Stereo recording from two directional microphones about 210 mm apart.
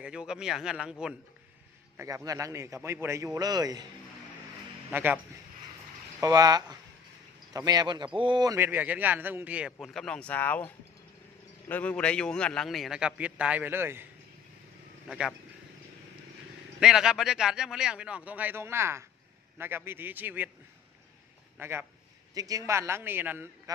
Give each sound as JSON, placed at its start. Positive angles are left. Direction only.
{"t": 0.0, "sound": "a man's voice", "side_deg": -5}
{"t": 2.0, "sound": "a man's voice", "side_deg": -15}
{"t": 4.9, "sound": "a man's voice", "side_deg": -10}
{"t": 6.2, "sound": "a man's voice", "side_deg": -15}
{"t": 11.7, "sound": "a man's voice", "side_deg": 5}
{"t": 15.0, "sound": "a man's voice", "side_deg": 0}
{"t": 16.8, "sound": "a man's voice", "side_deg": -5}
{"t": 21.5, "sound": "a man's voice", "side_deg": -10}